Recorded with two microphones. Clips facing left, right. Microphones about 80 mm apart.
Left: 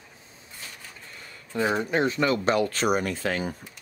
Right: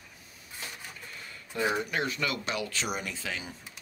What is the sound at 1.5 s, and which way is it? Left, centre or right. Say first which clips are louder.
Speech: left 5 dB; left.